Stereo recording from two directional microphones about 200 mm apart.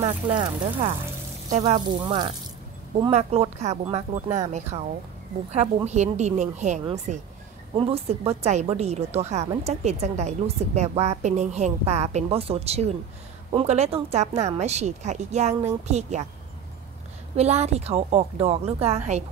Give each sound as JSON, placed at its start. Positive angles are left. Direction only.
{"t": 0.4, "sound": "a woman's voice", "side_deg": -30}
{"t": 17.4, "sound": "a woman's voice", "side_deg": -35}